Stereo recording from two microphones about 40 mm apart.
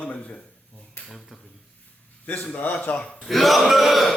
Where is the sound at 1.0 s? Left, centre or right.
Left.